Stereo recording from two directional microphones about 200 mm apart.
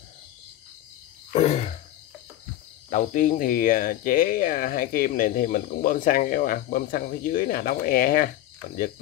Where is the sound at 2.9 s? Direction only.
40° left (ahead or behind).